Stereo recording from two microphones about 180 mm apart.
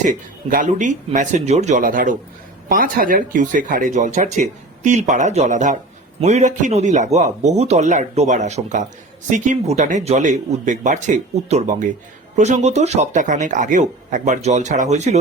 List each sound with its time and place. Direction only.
0.0 s speech: 45° right (ahead or behind)